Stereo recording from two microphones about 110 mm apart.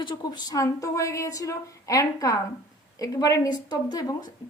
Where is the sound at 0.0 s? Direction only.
40° left (ahead or behind).